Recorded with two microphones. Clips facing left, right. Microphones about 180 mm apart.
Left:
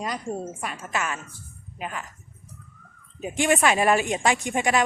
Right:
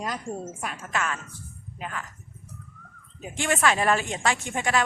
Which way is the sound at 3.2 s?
15° left (ahead or behind).